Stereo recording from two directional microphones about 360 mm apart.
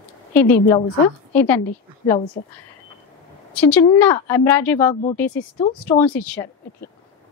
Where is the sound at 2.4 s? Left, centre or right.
Centre.